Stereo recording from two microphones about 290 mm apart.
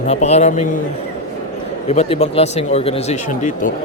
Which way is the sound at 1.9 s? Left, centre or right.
Left.